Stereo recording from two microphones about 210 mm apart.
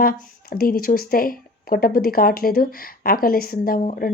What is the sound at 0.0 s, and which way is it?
Speech, 45° left (ahead or behind).